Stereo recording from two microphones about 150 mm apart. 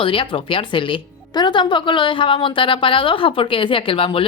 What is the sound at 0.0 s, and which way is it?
A woman's voice, 35° left (ahead or behind).